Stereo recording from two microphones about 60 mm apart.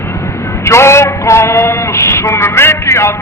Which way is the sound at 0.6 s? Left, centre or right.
Left.